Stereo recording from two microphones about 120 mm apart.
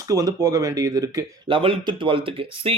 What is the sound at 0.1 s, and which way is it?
Speech, 30° right (ahead or behind).